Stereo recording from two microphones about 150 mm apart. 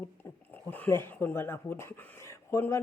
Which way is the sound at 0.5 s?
10° left (ahead or behind).